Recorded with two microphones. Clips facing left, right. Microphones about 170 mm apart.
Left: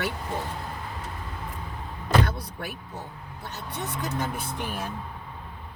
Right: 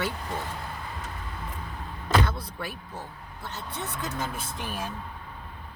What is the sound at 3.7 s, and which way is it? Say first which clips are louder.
Speech: left 3 dB; 15° left (ahead or behind).